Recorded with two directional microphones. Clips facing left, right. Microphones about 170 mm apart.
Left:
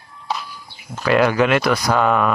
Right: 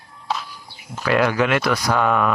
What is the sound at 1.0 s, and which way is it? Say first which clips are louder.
Speech: left 3 dB; 25° left (ahead or behind).